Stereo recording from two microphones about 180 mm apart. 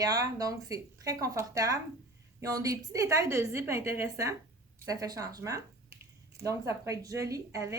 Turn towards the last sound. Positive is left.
turn(degrees=-15)  # may be behind; listen again after turning